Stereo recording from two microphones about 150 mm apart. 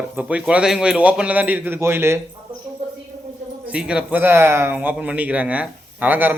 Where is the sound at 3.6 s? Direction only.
5° right (ahead or behind).